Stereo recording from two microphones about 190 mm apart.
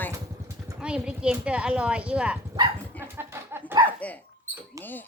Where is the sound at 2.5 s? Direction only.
20° right (ahead or behind).